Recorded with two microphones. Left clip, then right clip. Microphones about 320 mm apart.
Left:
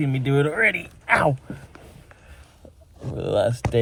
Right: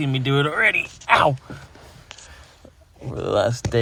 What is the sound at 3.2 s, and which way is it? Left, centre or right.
Speech, right.